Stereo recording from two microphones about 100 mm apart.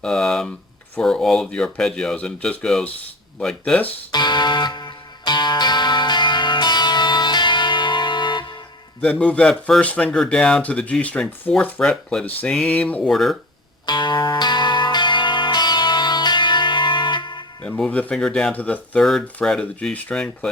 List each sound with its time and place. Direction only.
0.0 s speech: 5° left (ahead or behind)
4.1 s music: 45° left (ahead or behind)
9.0 s speech: 10° left (ahead or behind)
13.1 s speech: centre (ahead or behind)
13.8 s music: 45° left (ahead or behind)
17.6 s speech: 15° left (ahead or behind)
19.0 s speech: 5° left (ahead or behind)